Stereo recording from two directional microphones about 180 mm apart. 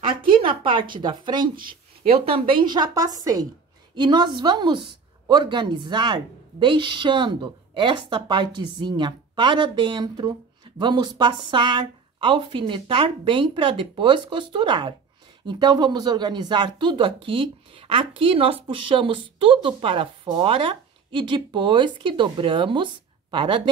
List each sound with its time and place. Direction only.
0.3 s a woman's voice: 25° right (ahead or behind)